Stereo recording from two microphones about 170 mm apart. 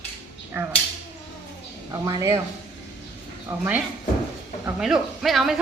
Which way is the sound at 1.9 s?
20° right (ahead or behind).